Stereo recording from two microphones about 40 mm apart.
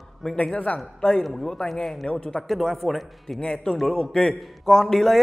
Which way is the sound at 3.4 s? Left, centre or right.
Left.